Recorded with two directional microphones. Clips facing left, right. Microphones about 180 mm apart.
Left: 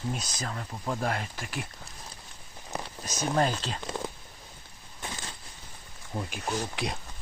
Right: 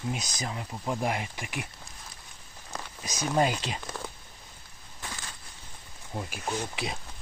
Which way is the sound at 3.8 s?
20° left (ahead or behind).